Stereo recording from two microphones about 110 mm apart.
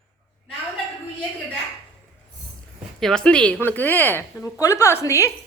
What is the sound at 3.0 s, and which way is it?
Speech, 5° left (ahead or behind).